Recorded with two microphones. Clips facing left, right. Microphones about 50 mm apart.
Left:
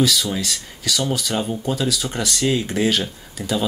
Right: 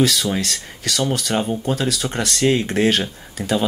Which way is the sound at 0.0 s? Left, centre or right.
Right.